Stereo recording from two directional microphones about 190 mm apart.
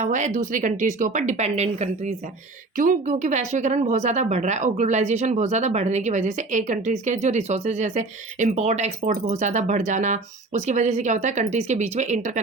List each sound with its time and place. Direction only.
0.0 s speech: 40° right (ahead or behind)